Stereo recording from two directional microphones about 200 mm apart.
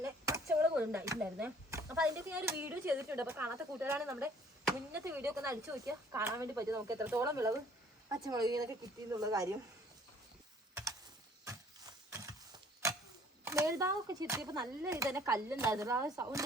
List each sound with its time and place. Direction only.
0.0 s speech: 15° right (ahead or behind)
11.4 s a sound: 15° right (ahead or behind)
13.4 s speech: 15° right (ahead or behind)